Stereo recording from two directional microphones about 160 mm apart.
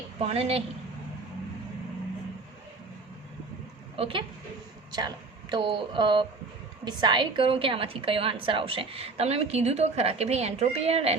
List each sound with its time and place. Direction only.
0.2 s a woman's voice: 40° right (ahead or behind)
3.9 s a woman's voice: 35° right (ahead or behind)
4.9 s a woman's voice: 25° right (ahead or behind)